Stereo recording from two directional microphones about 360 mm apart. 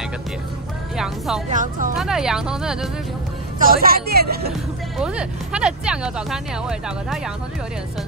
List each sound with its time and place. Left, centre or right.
0.9 s speech: centre
1.5 s speech: right
2.0 s speech: centre
3.5 s speech: right
4.5 s speech: centre